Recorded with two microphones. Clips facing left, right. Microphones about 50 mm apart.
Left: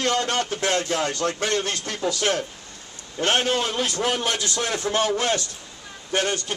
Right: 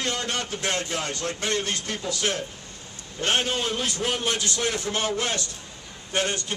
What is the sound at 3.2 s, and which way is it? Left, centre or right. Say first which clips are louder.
Speech: left 3 dB; left.